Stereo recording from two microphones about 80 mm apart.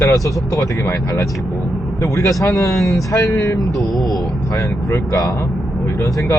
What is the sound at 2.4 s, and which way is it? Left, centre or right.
Speech, left.